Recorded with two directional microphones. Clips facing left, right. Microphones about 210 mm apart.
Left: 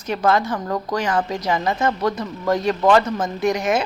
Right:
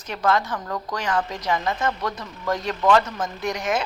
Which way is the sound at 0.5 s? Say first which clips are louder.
Left 6 dB; 25° left (ahead or behind).